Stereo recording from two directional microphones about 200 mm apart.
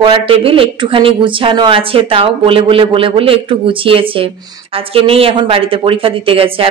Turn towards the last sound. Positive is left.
turn(degrees=-25)  # may be behind; listen again after turning